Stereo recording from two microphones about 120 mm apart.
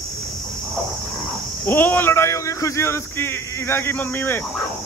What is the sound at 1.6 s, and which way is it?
Speech, 15° left (ahead or behind).